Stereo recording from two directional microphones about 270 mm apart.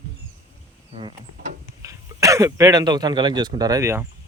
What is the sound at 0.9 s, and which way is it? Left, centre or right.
Insect, centre.